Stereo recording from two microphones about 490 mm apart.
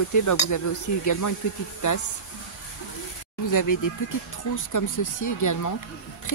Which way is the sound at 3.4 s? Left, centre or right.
Left.